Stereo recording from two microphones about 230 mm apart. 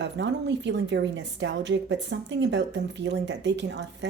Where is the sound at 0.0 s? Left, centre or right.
Right.